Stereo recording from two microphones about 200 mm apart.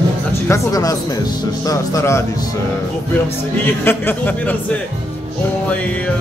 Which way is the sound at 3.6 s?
10° left (ahead or behind).